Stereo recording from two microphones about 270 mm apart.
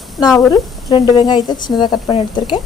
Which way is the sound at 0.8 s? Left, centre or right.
Centre.